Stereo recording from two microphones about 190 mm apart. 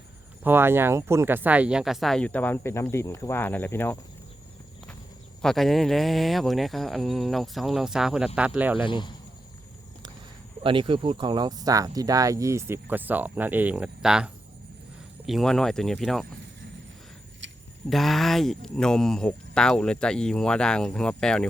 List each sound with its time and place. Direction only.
0.4 s speech: 10° right (ahead or behind); by 3.9 s 10° left (ahead or behind)
5.4 s speech: centre (ahead or behind)
8.8 s speech: 25° left (ahead or behind)
10.6 s speech: 25° right (ahead or behind); by 14.3 s 5° right (ahead or behind)
15.3 s speech: centre (ahead or behind)
17.4 s a sound: 75° right (ahead or behind)
17.8 s speech: centre (ahead or behind)